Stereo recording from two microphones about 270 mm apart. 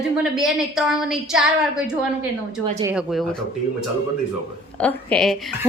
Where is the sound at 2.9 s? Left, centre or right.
Centre.